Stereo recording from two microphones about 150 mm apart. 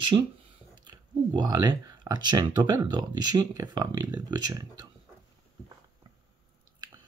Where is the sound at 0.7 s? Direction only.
30° right (ahead or behind).